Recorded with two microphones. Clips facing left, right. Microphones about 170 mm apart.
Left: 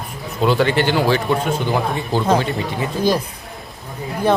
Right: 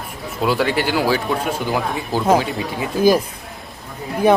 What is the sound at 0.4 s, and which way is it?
Speech, 5° right (ahead or behind).